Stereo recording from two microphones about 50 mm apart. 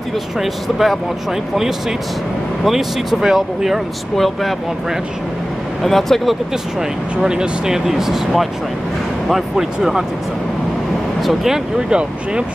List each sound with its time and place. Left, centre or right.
0.4 s speech: centre
2.6 s speech: centre
4.2 s speech: centre
5.8 s speech: centre
7.2 s speech: centre
9.3 s speech: centre
11.1 s speech: centre
11.9 s speech: centre